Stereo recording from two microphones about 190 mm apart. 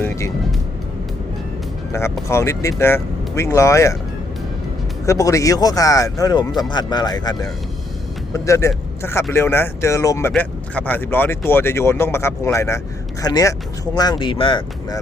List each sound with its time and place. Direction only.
0.0 s music: 10° left (ahead or behind)
1.9 s speech: 15° left (ahead or behind)
5.0 s speech: 15° left (ahead or behind)